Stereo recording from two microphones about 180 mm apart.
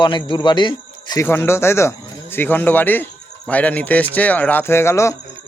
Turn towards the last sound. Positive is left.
turn(degrees=15)  # may be behind; listen again after turning